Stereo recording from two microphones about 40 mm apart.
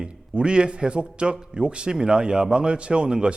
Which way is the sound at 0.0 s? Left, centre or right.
Right.